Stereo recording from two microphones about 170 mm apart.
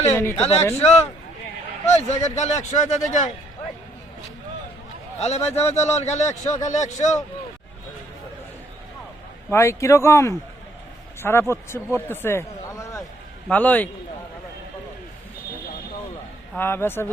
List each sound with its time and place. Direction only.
0.0 s speech: 15° left (ahead or behind)
0.8 s a man's voice: 40° left (ahead or behind)
5.2 s a man's voice: 40° left (ahead or behind)
9.5 s speech: 15° left (ahead or behind)
16.6 s speech: 15° left (ahead or behind)